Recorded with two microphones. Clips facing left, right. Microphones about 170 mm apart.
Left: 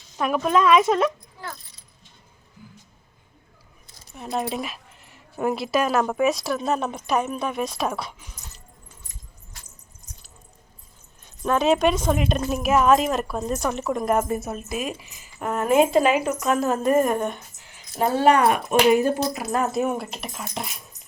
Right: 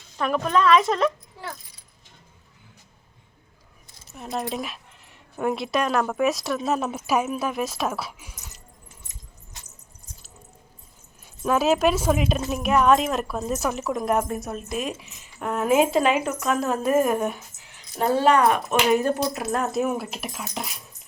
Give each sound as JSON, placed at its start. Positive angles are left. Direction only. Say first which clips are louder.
{"t": 0.2, "sound": "a woman's voice", "louder": "left 1 dB", "side_deg": 5}
{"t": 4.1, "sound": "speech", "louder": "left 2 dB", "side_deg": 0}
{"t": 9.0, "sound": "keys jangling", "louder": "even", "side_deg": -20}
{"t": 10.1, "sound": "a sound", "louder": "left 1 dB", "side_deg": -30}
{"t": 11.2, "sound": "speech", "louder": "even", "side_deg": -5}